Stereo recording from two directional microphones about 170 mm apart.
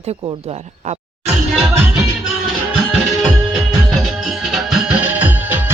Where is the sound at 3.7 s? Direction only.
Centre (ahead or behind).